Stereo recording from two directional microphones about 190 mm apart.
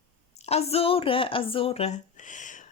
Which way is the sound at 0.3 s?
35° left (ahead or behind).